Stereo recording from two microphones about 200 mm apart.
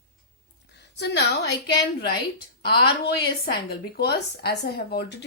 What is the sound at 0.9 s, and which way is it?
A woman's voice, 60° left (ahead or behind).